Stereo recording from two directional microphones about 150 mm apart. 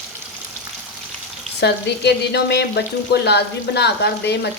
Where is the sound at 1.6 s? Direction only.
90° left.